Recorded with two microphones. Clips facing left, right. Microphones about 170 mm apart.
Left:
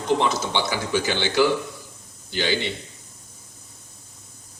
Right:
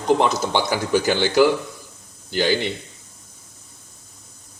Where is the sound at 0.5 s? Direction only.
45° right (ahead or behind).